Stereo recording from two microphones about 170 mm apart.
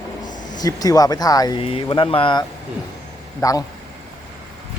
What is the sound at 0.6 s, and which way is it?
Speech, 20° left (ahead or behind).